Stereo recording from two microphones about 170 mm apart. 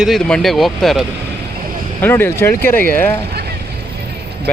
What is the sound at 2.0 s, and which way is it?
Speech, 10° left (ahead or behind).